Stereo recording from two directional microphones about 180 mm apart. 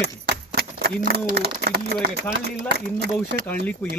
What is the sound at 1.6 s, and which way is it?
Speech, 65° right (ahead or behind).